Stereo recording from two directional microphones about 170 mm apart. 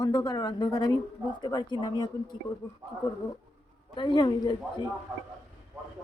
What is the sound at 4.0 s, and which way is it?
Speech, 25° left (ahead or behind).